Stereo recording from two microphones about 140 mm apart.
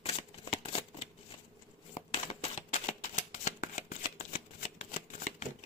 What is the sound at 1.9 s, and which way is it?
Shuffling cards, 55° left (ahead or behind).